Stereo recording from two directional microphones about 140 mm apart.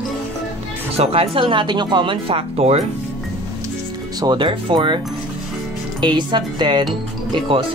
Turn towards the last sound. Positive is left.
turn(degrees=-40)  # may be behind; listen again after turning